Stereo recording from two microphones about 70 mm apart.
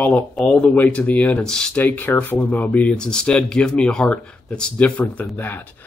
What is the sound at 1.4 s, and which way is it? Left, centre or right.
Speech, centre.